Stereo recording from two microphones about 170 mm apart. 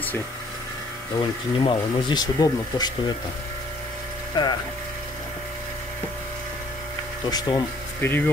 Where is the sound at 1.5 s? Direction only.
25° left (ahead or behind).